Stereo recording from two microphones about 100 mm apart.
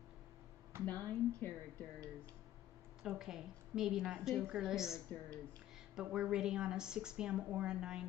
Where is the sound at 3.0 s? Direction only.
5° right (ahead or behind).